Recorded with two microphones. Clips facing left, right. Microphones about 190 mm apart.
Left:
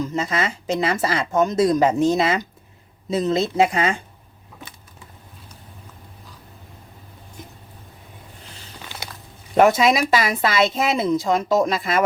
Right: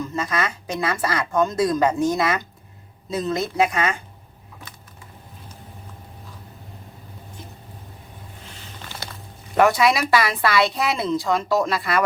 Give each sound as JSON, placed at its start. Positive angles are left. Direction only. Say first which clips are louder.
{"t": 0.0, "sound": "a woman's voice", "louder": "left 2 dB", "side_deg": 20}
{"t": 9.6, "sound": "a woman's voice", "louder": "left 2 dB", "side_deg": 20}